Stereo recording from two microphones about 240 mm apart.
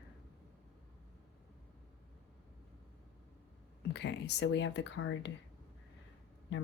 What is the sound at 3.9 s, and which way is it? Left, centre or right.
Speech, left.